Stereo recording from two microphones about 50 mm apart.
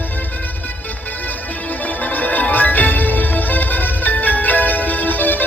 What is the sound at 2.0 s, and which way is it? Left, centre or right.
Music, left.